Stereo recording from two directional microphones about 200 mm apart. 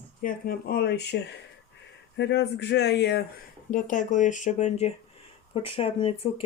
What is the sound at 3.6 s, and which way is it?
Speech, 40° left (ahead or behind).